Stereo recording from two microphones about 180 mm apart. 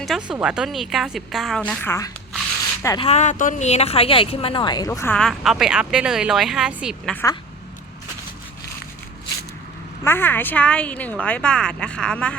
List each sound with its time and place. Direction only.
0.3 s a woman's voice: 5° right (ahead or behind); by 3.1 s 20° left (ahead or behind)
3.1 s speech: 40° left (ahead or behind); by 7.2 s centre (ahead or behind)
10.0 s speech: 10° left (ahead or behind)